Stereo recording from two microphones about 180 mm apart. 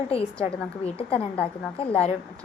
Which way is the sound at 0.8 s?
30° left (ahead or behind).